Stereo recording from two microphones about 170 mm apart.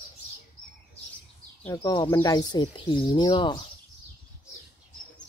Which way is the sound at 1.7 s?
20° left (ahead or behind).